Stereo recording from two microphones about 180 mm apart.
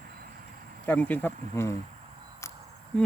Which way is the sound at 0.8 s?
10° left (ahead or behind).